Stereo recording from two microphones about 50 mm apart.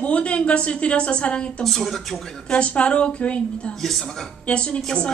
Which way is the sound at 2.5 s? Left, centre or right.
Left.